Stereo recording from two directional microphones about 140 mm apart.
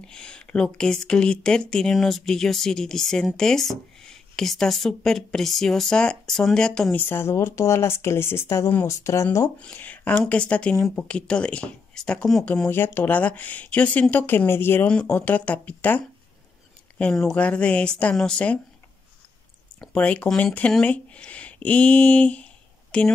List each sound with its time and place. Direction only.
0.0 s speech: 5° left (ahead or behind)
9.6 s speech: 10° left (ahead or behind)
12.6 s speech: 15° left (ahead or behind)
17.0 s speech: centre (ahead or behind)
19.8 s speech: 10° left (ahead or behind)